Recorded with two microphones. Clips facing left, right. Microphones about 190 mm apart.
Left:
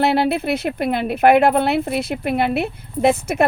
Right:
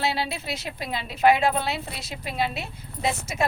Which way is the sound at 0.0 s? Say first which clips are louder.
Left 11 dB; 60° left (ahead or behind).